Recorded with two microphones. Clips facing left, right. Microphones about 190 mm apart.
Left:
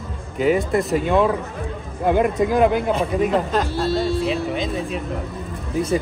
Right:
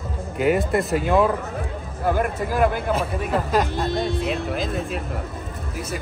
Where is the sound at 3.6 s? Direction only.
15° right (ahead or behind).